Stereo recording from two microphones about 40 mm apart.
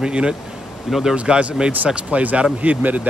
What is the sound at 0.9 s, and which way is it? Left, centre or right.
Speech, centre.